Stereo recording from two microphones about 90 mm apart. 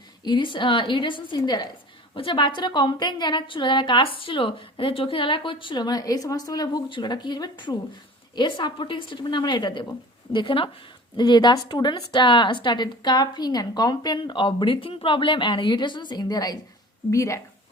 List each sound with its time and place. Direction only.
0.3 s speech: 65° left (ahead or behind)
2.1 s a woman's voice: 70° left (ahead or behind)
5.8 s speech: 45° left (ahead or behind)
10.3 s a woman's voice: 70° left (ahead or behind)
11.2 s speech: 55° left (ahead or behind)
12.2 s speech: 65° left (ahead or behind); by 14.2 s 50° left (ahead or behind)
14.2 s speech: 65° left (ahead or behind); by 16.6 s 45° left (ahead or behind)
17.1 s speech: 35° left (ahead or behind)